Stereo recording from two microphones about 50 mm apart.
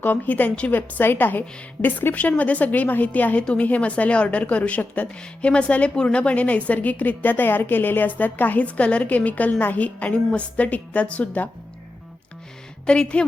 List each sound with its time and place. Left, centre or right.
0.0 s a woman's voice: left
5.5 s a woman's voice: left
12.8 s a woman's voice: centre